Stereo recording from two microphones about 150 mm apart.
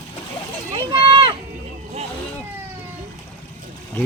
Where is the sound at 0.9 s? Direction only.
35° right (ahead or behind).